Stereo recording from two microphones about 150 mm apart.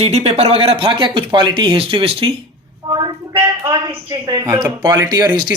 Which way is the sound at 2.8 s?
25° right (ahead or behind).